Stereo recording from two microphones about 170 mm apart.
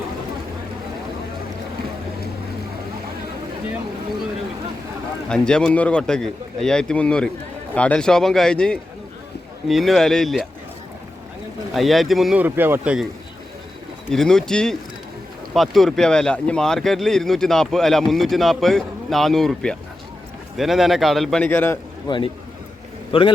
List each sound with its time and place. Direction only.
5.3 s speech: 5° left (ahead or behind)
11.7 s speech: centre (ahead or behind)
14.1 s speech: 5° left (ahead or behind)
23.1 s a man's voice: 30° left (ahead or behind)